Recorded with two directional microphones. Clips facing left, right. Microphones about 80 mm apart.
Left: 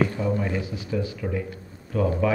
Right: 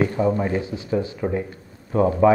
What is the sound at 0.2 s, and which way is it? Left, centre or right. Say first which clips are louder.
A man's voice: right 5 dB; right.